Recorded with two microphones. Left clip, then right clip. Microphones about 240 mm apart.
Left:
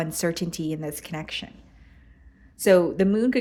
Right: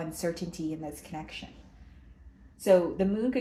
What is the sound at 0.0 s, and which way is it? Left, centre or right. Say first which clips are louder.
Speech: left 6 dB; left.